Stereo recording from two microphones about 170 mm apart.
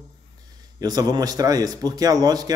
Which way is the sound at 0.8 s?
20° right (ahead or behind).